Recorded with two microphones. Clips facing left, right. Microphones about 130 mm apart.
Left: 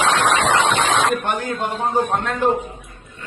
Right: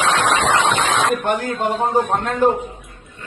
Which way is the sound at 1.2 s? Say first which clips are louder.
Right 3 dB; 40° right (ahead or behind).